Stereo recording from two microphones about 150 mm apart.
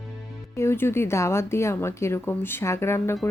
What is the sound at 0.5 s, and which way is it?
Speech, 15° left (ahead or behind).